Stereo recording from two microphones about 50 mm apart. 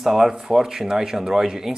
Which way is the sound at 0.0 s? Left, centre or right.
Centre.